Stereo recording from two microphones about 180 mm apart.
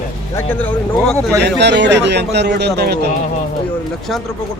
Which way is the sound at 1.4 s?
70° right (ahead or behind).